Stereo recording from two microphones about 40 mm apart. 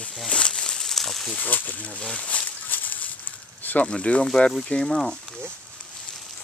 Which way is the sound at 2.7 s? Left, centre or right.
Left.